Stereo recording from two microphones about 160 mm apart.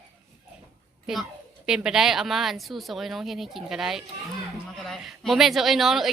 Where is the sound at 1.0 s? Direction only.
Centre (ahead or behind).